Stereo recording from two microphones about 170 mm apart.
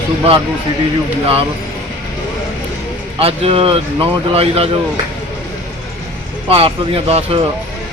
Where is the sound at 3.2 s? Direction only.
35° right (ahead or behind).